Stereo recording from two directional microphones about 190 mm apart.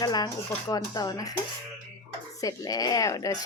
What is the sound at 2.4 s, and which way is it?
Speech, 20° left (ahead or behind).